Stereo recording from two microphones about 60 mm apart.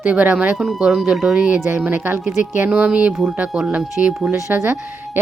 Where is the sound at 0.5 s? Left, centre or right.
Centre.